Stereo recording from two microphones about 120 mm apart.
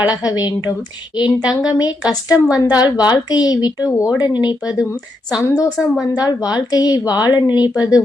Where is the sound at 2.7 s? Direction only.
35° left (ahead or behind).